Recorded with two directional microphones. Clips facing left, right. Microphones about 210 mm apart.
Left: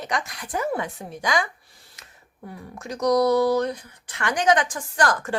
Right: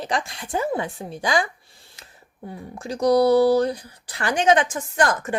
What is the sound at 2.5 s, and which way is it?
Speech, 30° right (ahead or behind).